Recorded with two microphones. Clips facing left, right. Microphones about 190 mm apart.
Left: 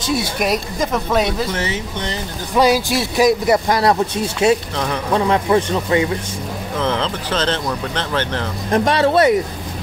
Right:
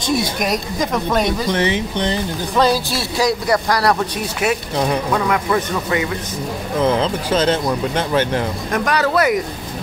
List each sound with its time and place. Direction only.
0.0 s speech: 5° left (ahead or behind)
1.5 s speech: 15° right (ahead or behind)
2.5 s speech: 15° left (ahead or behind)
4.7 s speech: 10° right (ahead or behind)
5.1 s speech: 25° left (ahead or behind)
6.8 s speech: 10° right (ahead or behind)
8.7 s speech: 25° left (ahead or behind)